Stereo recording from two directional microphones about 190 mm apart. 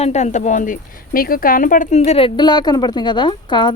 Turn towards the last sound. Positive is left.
turn(degrees=25)  # may be behind; listen again after turning